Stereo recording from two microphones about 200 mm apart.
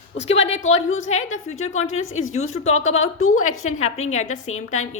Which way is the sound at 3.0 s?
90° left.